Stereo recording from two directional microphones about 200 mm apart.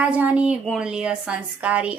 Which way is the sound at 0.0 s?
5° right (ahead or behind).